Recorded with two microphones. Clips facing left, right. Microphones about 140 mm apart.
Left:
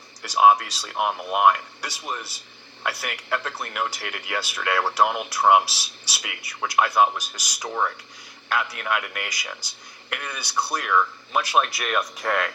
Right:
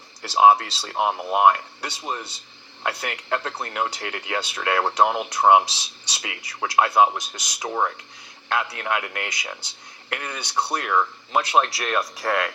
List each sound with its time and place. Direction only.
0.2 s speech: 25° right (ahead or behind)